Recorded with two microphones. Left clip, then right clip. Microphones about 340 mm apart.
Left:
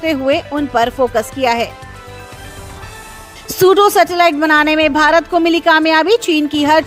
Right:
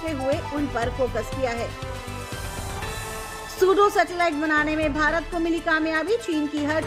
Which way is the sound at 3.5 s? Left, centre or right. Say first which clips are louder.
Left 9 dB; left.